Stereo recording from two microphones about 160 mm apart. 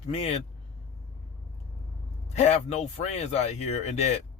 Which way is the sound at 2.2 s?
45° left (ahead or behind).